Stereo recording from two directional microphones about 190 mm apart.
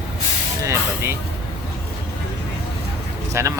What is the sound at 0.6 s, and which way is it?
Speech, 15° right (ahead or behind).